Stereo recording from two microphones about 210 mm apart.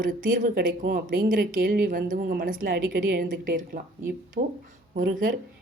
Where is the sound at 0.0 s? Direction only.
40° right (ahead or behind).